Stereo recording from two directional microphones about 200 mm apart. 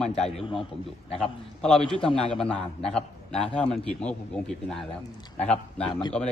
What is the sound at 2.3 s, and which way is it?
A man's voice, 5° left (ahead or behind).